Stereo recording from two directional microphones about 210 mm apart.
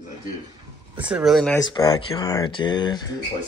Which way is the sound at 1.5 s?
15° left (ahead or behind).